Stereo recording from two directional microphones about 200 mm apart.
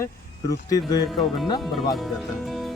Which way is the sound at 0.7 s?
20° left (ahead or behind).